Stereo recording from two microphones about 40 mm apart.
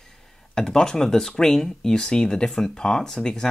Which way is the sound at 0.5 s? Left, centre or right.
Centre.